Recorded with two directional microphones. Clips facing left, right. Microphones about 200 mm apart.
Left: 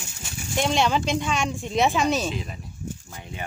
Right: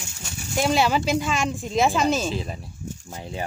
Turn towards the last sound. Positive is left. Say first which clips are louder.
# right 5 dB
turn(degrees=-35)  # may be behind; listen again after turning